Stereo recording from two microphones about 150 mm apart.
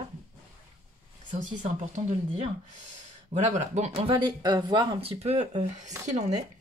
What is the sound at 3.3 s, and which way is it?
Speech, 50° right (ahead or behind).